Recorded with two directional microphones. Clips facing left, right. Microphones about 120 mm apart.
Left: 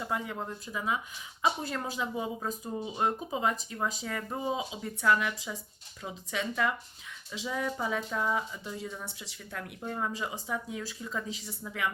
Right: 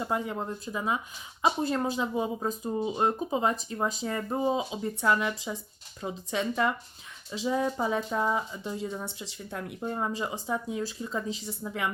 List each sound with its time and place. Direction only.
0.0 s speech: 30° right (ahead or behind)